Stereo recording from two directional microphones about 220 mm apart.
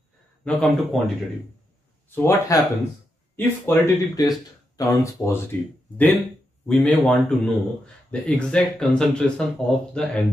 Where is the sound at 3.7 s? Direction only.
15° left (ahead or behind).